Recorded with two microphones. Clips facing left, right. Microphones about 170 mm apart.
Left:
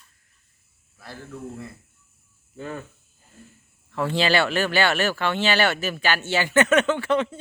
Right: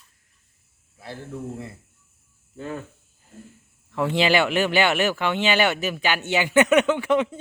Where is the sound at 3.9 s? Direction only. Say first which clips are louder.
Right 1 dB; 15° right (ahead or behind).